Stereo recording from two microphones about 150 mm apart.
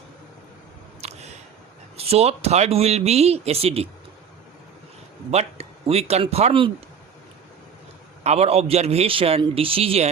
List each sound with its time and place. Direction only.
1.0 s a sound: 45° right (ahead or behind)
2.0 s speech: 45° right (ahead or behind)
5.3 s speech: 45° right (ahead or behind)
8.2 s a man's voice: 45° right (ahead or behind)